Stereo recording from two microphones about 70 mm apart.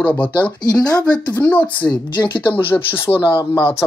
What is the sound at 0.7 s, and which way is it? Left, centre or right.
Speech, centre.